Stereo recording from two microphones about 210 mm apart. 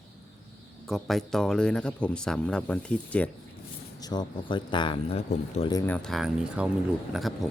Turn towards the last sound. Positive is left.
turn(degrees=0)  # may be behind; listen again after turning